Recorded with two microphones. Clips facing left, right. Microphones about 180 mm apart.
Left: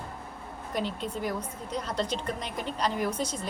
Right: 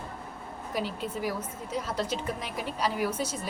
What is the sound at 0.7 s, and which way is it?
A woman's voice, 5° right (ahead or behind).